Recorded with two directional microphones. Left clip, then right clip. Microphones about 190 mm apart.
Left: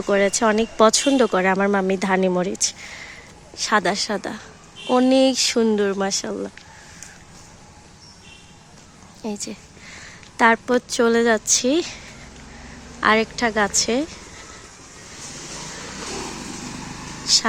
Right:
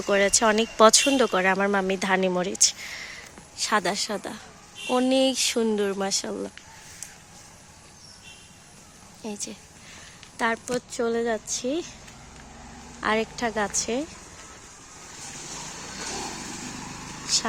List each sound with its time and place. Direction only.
0.0 s a woman's voice: centre (ahead or behind)
9.2 s a sound: centre (ahead or behind)
10.3 s a woman's voice: 10° left (ahead or behind)
13.0 s speech: 5° right (ahead or behind)
17.3 s speech: centre (ahead or behind)